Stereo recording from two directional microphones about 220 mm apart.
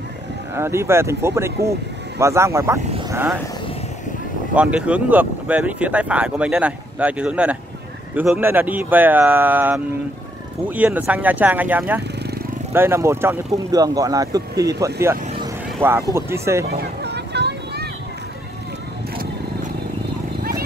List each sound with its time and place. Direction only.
0.6 s speech: 10° right (ahead or behind)
4.6 s speech: 5° right (ahead or behind)
16.6 s a sound: 50° right (ahead or behind)